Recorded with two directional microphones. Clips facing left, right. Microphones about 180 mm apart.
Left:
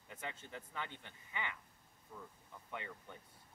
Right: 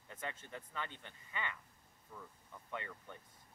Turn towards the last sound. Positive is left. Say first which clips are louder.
# right 1 dB
turn(degrees=15)  # may be behind; listen again after turning